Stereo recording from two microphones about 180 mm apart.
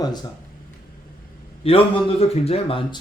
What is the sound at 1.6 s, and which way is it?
Speech, 30° left (ahead or behind).